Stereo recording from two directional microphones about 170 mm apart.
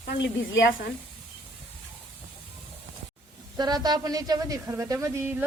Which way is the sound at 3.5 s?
25° right (ahead or behind).